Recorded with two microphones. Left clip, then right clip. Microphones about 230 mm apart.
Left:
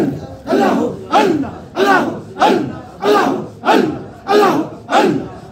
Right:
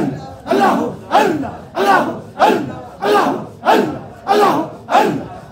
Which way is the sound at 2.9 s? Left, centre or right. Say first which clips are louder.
Left 1 dB; centre.